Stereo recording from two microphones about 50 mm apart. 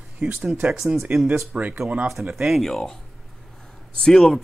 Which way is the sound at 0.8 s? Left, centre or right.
Right.